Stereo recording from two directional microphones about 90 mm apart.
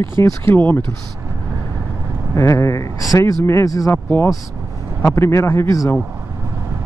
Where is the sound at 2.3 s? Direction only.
30° left (ahead or behind).